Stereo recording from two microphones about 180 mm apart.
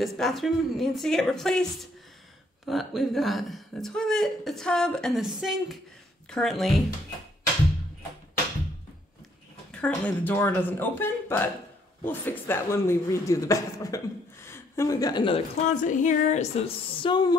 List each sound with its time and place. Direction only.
0.0 s a woman's voice: centre (ahead or behind)
9.7 s speech: 5° left (ahead or behind); by 15.4 s 25° left (ahead or behind)
15.7 s speech: 45° left (ahead or behind); by 17.4 s 25° left (ahead or behind)